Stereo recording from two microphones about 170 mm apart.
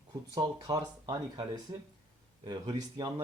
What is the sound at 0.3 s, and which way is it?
Speech, 25° right (ahead or behind).